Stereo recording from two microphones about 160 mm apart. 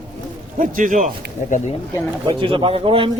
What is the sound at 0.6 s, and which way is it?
Speech, 55° right (ahead or behind).